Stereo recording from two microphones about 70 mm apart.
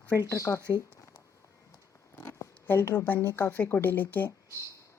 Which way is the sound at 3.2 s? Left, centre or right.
Left.